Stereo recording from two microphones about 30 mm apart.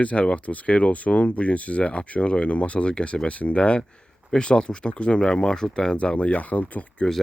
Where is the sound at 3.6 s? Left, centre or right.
Left.